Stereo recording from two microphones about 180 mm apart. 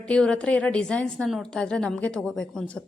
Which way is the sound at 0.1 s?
5° left (ahead or behind).